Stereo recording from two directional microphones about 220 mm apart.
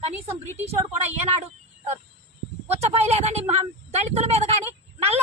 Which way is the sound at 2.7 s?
30° right (ahead or behind).